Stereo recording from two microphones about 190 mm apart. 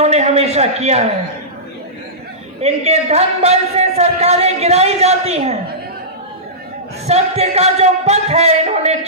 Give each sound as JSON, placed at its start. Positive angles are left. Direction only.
{"t": 0.0, "sound": "a man's voice", "side_deg": -35}
{"t": 2.6, "sound": "a man's voice", "side_deg": -35}
{"t": 7.1, "sound": "a man's voice", "side_deg": -35}